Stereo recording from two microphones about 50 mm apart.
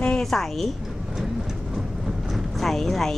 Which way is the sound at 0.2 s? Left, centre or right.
Centre.